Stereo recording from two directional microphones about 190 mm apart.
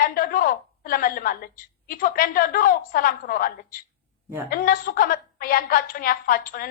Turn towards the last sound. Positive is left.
turn(degrees=50)  # may be behind; listen again after turning